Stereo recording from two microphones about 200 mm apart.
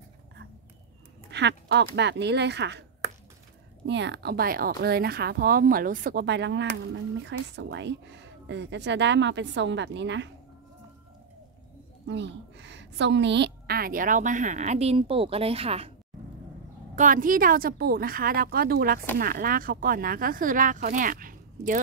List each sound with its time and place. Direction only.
1.3 s speech: 60° right (ahead or behind)
3.8 s speech: 60° right (ahead or behind)
12.1 s a woman's voice: 60° right (ahead or behind); by 15.9 s 30° right (ahead or behind)
16.9 s speech: 40° right (ahead or behind)